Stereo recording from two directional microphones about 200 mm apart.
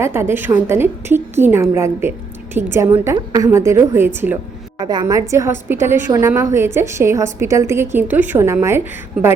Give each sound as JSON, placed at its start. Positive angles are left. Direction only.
{"t": 0.0, "sound": "a woman's voice", "side_deg": -10}